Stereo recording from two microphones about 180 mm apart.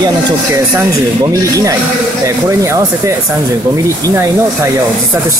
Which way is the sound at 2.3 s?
15° right (ahead or behind).